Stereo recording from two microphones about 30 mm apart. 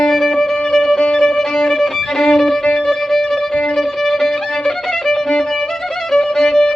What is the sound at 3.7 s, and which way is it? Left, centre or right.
Violin, centre.